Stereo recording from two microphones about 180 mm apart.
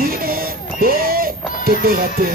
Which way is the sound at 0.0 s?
55° right (ahead or behind).